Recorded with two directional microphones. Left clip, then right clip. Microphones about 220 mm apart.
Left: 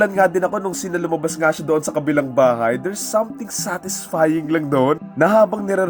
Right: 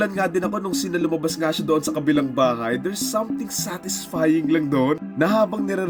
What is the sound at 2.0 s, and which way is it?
Speech, centre (ahead or behind).